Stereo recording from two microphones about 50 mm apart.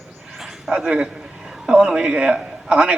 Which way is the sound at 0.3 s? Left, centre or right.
Centre.